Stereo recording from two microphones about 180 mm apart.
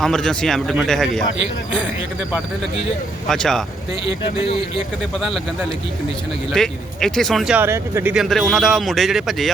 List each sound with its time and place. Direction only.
0.0 s speech: centre (ahead or behind)
3.2 s speech: 5° left (ahead or behind)
6.5 s speech: centre (ahead or behind); by 8.1 s 15° right (ahead or behind)
8.1 s speech: centre (ahead or behind)